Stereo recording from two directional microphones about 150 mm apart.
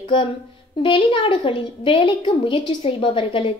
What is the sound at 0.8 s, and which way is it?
A child's voice, 35° left (ahead or behind).